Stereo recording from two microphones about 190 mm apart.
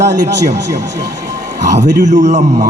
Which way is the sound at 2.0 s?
40° right (ahead or behind).